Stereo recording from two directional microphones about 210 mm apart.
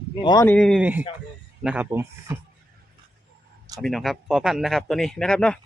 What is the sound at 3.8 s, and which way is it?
Speech, centre (ahead or behind).